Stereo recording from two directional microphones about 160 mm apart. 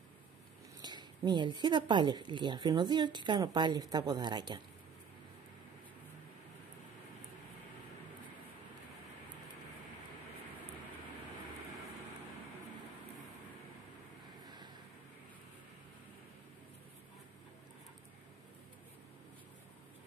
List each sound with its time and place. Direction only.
0.8 s a woman's voice: 30° right (ahead or behind)